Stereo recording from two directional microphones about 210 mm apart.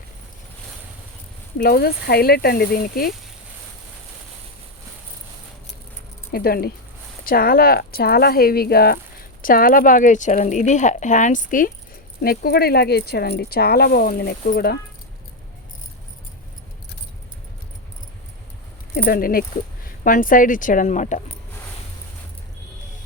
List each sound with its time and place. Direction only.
1.5 s speech: 50° left (ahead or behind)
6.3 s speech: 45° left (ahead or behind)
19.0 s speech: 45° left (ahead or behind)